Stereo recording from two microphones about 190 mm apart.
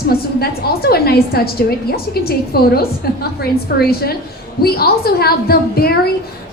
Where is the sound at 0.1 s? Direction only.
55° left (ahead or behind).